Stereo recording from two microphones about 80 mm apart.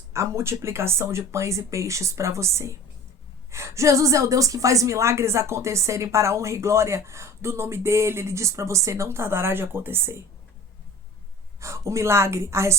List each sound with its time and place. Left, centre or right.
0.1 s a woman's voice: right
11.6 s a woman's voice: right